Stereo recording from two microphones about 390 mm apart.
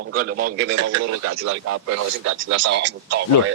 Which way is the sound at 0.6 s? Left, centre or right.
Right.